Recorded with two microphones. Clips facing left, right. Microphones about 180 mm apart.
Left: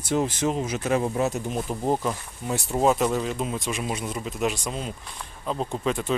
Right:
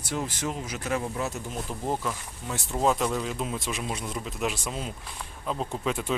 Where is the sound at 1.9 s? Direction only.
30° left (ahead or behind).